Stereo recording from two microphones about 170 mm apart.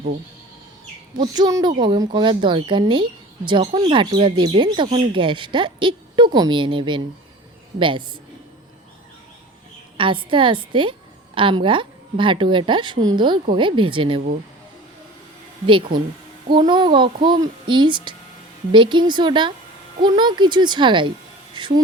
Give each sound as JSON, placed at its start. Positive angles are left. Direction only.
{"t": 1.2, "sound": "a woman's voice", "side_deg": -20}
{"t": 10.0, "sound": "a woman's voice", "side_deg": -30}
{"t": 15.6, "sound": "a woman's voice", "side_deg": -30}